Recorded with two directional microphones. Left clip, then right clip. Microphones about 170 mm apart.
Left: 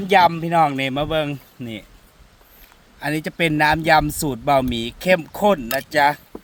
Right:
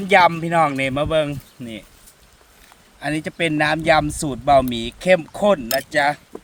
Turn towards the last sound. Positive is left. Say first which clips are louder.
# left 1 dB
turn(degrees=35)  # may be behind; listen again after turning